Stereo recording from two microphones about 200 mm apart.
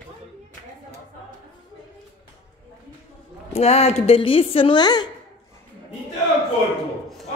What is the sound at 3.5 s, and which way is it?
A woman's voice, 30° left (ahead or behind).